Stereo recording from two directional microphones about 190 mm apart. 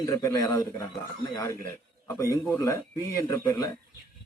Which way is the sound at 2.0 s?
15° left (ahead or behind).